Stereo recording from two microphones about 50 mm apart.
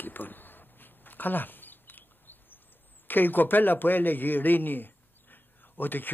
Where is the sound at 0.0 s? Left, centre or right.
Left.